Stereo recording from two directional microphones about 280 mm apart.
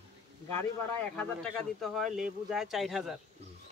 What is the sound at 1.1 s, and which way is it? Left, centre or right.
Speech, centre.